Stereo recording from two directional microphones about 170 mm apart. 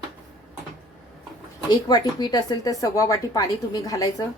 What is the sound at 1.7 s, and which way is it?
Speech, 25° left (ahead or behind).